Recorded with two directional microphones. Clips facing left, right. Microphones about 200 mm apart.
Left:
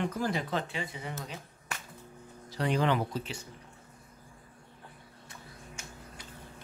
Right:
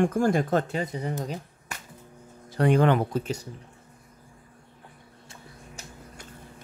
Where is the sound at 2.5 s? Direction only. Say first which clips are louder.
Right 7 dB; 55° right (ahead or behind).